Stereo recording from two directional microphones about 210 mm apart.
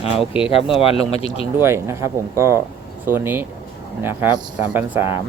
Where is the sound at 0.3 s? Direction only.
25° left (ahead or behind).